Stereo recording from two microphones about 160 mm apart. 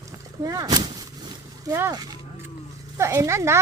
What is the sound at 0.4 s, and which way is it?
Speech, 25° right (ahead or behind).